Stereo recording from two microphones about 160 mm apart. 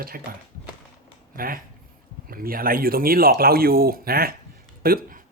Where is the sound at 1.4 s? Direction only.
65° right (ahead or behind).